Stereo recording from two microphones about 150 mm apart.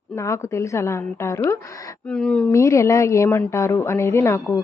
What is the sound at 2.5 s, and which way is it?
A woman's voice, 20° left (ahead or behind).